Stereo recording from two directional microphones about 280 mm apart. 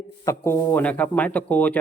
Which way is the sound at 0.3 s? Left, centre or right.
Centre.